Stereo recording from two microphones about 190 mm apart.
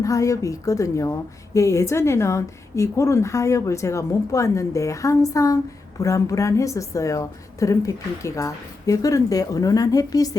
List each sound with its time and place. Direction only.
0.0 s a woman's voice: 15° left (ahead or behind)